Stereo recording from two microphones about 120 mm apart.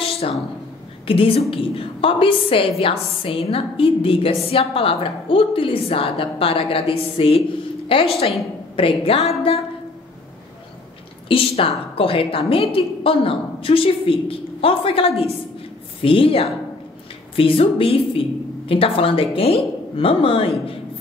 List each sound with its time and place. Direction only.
0.0 s a sound: 60° left (ahead or behind)
1.0 s a woman's voice: 50° left (ahead or behind)
11.2 s a woman's voice: 50° left (ahead or behind)